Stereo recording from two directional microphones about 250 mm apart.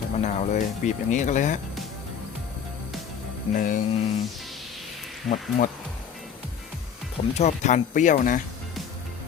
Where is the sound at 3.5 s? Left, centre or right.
Left.